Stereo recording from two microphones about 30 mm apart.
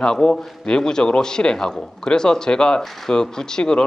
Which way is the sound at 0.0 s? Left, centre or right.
Left.